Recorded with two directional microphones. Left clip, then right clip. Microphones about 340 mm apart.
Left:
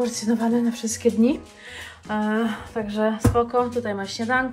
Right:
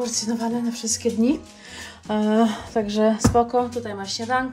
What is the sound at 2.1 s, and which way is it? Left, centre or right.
A woman's voice, centre.